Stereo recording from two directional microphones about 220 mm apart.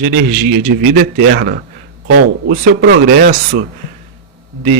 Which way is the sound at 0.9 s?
45° right (ahead or behind).